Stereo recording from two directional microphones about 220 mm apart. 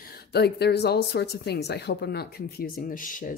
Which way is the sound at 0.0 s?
45° left (ahead or behind).